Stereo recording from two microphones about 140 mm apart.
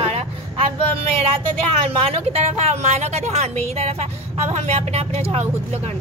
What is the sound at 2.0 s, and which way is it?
Speech, 50° right (ahead or behind).